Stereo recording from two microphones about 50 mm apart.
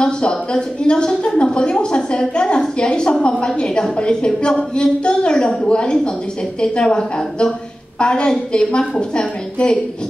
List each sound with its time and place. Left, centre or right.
0.0 s a woman's voice: centre